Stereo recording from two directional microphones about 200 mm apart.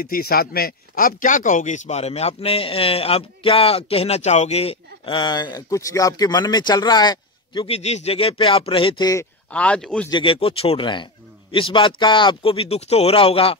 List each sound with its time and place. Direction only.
0.0 s speech: 50° left (ahead or behind); by 9.3 s 20° left (ahead or behind)
9.5 s speech: 5° left (ahead or behind)
10.0 s speech: 25° left (ahead or behind)